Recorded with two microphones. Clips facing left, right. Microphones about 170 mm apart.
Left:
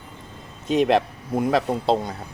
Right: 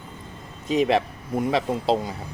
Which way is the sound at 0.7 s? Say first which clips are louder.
Left 2 dB; centre (ahead or behind).